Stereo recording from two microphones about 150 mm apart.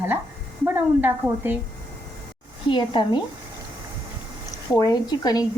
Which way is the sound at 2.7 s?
30° left (ahead or behind).